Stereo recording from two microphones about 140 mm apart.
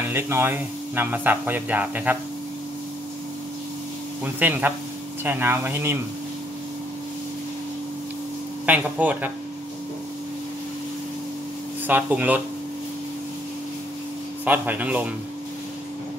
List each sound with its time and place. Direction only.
0.1 s speech: 15° right (ahead or behind)
4.2 s speech: 10° right (ahead or behind)
8.6 s speech: 10° right (ahead or behind)
11.9 s speech: 10° right (ahead or behind)
14.4 s speech: 10° right (ahead or behind)